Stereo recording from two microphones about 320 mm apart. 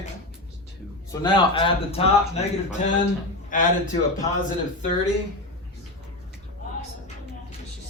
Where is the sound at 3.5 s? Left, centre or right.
Left.